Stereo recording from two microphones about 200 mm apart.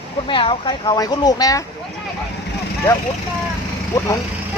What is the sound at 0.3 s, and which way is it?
Speech, 25° left (ahead or behind).